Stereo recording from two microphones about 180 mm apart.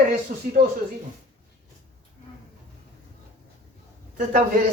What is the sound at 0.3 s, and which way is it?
Speech, 50° right (ahead or behind).